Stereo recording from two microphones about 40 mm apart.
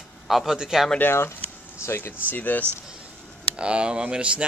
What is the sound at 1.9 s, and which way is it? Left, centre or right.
Speech, left.